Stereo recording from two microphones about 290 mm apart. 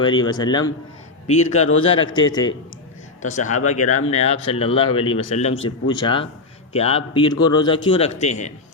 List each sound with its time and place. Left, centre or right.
0.0 s speech: centre
1.5 s a man's voice: left
1.8 s speech: centre
3.2 s speech: left